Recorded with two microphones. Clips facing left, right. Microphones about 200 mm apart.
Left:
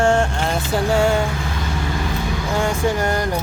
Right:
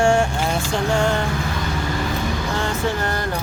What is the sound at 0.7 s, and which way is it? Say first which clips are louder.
Music: left 4 dB; 5° left (ahead or behind).